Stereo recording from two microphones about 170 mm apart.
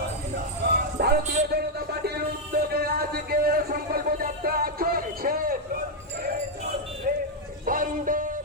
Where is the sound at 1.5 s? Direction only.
70° right (ahead or behind).